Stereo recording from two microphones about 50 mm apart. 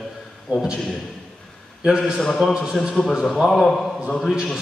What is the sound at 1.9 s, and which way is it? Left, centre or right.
Speech, centre.